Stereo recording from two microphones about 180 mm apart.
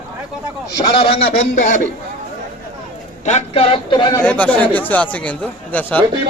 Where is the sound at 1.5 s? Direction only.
45° left (ahead or behind).